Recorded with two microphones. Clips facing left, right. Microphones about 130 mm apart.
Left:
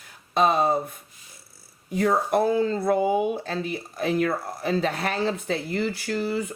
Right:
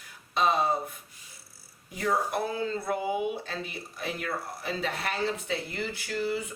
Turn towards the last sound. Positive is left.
turn(degrees=45)  # may be behind; listen again after turning